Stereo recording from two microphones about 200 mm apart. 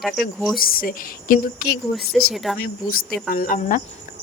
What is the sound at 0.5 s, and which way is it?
Speech, 45° left (ahead or behind).